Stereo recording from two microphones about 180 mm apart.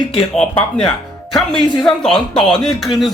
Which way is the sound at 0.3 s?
5° left (ahead or behind).